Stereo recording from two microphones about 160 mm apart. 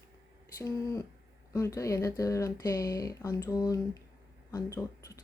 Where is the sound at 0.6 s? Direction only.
20° left (ahead or behind).